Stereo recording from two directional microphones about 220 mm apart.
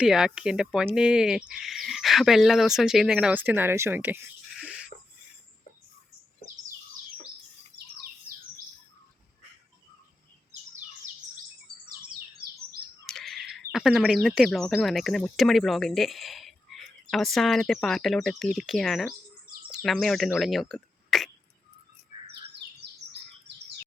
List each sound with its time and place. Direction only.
0.0 s speech: 5° right (ahead or behind)
11.9 s bird: 40° right (ahead or behind)
13.1 s speech: centre (ahead or behind)